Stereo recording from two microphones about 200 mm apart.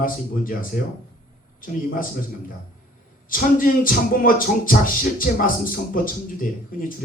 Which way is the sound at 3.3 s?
45° left (ahead or behind).